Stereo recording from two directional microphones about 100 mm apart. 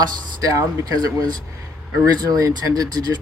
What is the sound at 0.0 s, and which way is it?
Speech, 35° right (ahead or behind).